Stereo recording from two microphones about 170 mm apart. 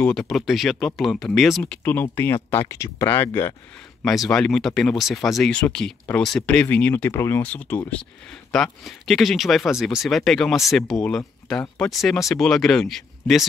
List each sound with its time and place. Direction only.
0.0 s speech: 5° left (ahead or behind)
4.0 s speech: centre (ahead or behind)